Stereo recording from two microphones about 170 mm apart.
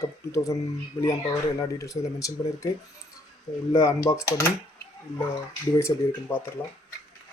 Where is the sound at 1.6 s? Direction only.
20° left (ahead or behind).